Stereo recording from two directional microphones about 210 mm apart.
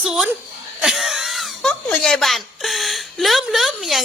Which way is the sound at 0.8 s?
Centre (ahead or behind).